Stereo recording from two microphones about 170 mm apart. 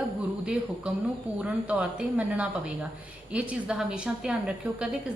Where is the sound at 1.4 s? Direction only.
10° right (ahead or behind).